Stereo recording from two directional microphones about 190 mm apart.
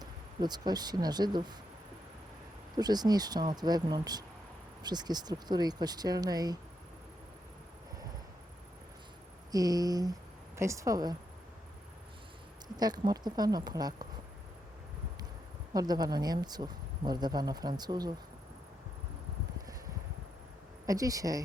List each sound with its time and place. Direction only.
0.0 s speech: 20° right (ahead or behind)
2.7 s speech: 20° right (ahead or behind)
9.5 s a woman's voice: 20° right (ahead or behind)
12.6 s speech: 20° right (ahead or behind)
15.7 s speech: 20° right (ahead or behind)
20.8 s speech: 20° right (ahead or behind)